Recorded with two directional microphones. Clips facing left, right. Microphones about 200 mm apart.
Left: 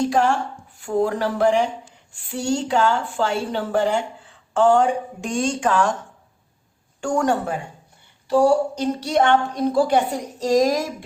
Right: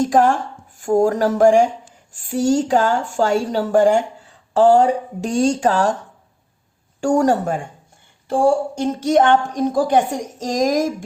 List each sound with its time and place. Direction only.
0.0 s a woman's voice: 45° right (ahead or behind)
7.0 s a woman's voice: 40° right (ahead or behind)